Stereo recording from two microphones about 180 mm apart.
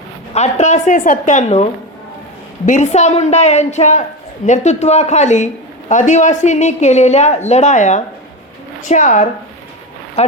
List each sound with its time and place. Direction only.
0.3 s a woman's voice: 40° left (ahead or behind)
2.6 s a woman's voice: 40° left (ahead or behind)
10.2 s a sound: 35° left (ahead or behind)